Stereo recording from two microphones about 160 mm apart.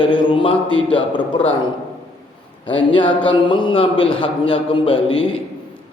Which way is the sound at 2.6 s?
30° left (ahead or behind).